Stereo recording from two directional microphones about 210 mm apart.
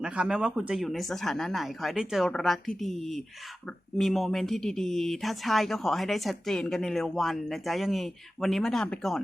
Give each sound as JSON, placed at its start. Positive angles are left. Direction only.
{"t": 0.0, "sound": "speech", "side_deg": -5}